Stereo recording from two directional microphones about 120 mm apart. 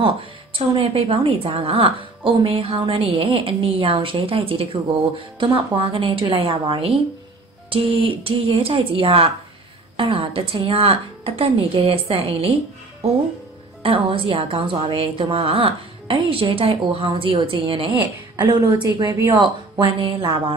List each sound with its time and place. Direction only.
0.0 s a woman's voice: 45° right (ahead or behind)
13.8 s a woman's voice: 50° right (ahead or behind)
18.3 s a sound: 35° right (ahead or behind)
18.9 s speech: 30° right (ahead or behind)
19.4 s a woman's voice: 45° right (ahead or behind)